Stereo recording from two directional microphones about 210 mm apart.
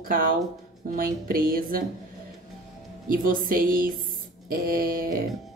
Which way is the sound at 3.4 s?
40° right (ahead or behind).